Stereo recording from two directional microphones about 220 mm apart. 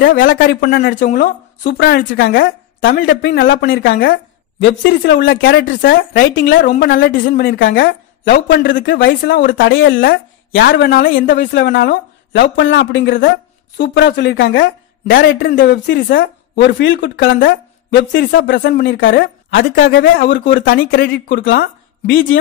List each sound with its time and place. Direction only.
0.0 s a woman's voice: 50° left (ahead or behind)
19.7 s a woman's voice: 55° left (ahead or behind)
20.4 s a woman's voice: 40° left (ahead or behind)